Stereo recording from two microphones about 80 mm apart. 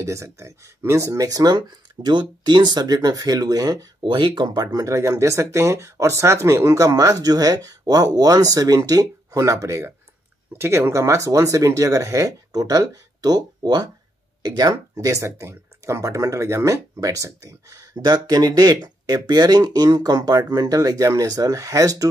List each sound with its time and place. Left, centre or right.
0.0 s speech: right
2.0 s speech: right
4.0 s speech: right
4.7 s speech: right
17.9 s speech: right